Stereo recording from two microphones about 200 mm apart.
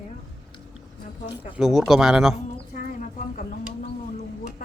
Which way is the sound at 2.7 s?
40° left (ahead or behind).